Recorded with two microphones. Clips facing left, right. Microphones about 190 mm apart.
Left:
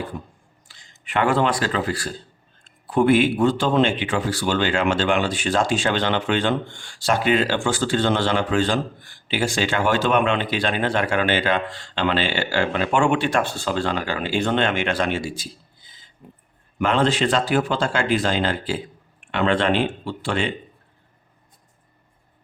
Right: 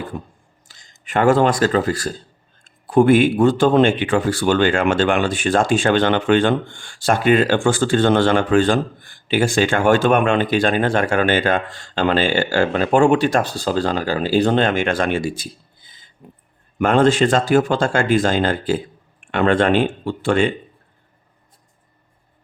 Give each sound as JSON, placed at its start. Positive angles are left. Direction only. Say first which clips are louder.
{"t": 0.7, "sound": "speech", "louder": "right 4 dB", "side_deg": -45}